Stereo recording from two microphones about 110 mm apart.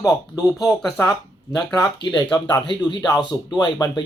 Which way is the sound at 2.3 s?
40° left (ahead or behind).